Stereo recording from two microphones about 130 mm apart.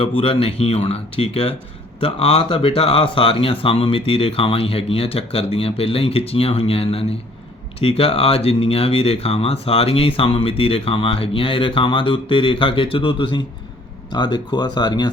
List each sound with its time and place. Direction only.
0.0 s speech: 45° left (ahead or behind)